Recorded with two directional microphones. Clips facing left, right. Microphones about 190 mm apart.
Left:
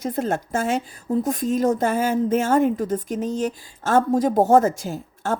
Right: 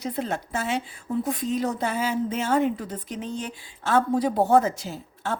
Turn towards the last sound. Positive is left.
turn(degrees=45)  # may be behind; listen again after turning